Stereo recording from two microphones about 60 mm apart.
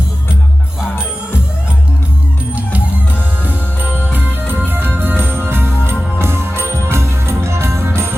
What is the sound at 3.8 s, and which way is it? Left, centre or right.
Music, right.